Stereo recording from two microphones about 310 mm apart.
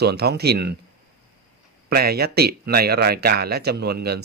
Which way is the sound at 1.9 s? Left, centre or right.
Right.